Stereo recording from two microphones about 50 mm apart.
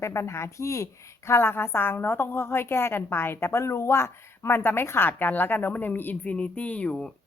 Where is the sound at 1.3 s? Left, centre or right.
Left.